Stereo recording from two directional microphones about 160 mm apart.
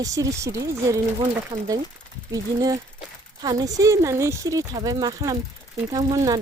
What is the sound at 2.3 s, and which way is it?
Speech, 20° right (ahead or behind).